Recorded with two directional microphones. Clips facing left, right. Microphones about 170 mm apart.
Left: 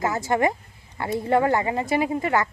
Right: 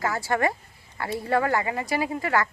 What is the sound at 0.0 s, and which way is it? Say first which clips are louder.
Speech: left 3 dB; 20° left (ahead or behind).